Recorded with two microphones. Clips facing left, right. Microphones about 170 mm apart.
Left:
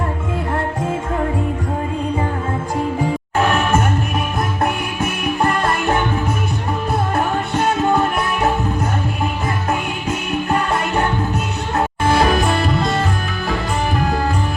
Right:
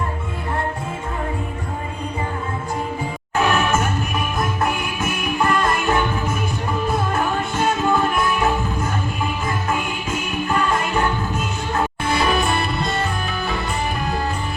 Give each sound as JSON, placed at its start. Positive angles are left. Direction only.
{"t": 12.0, "sound": "music", "side_deg": 90}